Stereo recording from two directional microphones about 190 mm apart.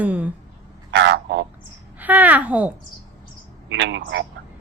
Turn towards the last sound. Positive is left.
turn(degrees=-70)  # may be behind; listen again after turning